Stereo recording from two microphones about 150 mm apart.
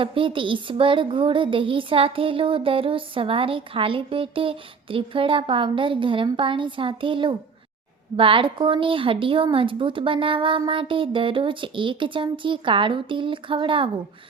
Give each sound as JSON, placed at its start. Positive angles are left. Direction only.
{"t": 0.0, "sound": "speech", "side_deg": -35}